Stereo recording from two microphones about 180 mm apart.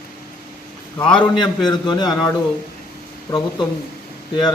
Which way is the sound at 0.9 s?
5° left (ahead or behind).